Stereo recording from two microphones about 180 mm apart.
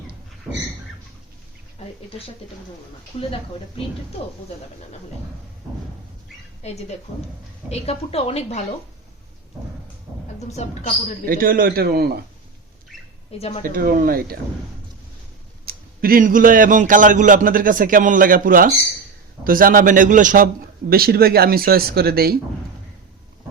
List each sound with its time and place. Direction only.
3.1 s a woman's voice: 35° left (ahead or behind)
6.6 s a woman's voice: 35° left (ahead or behind)
10.5 s a woman's voice: 40° left (ahead or behind)
11.3 s speech: 55° right (ahead or behind)
13.3 s a woman's voice: 35° left (ahead or behind)
13.7 s speech: 50° right (ahead or behind)
15.6 s speech: 55° right (ahead or behind)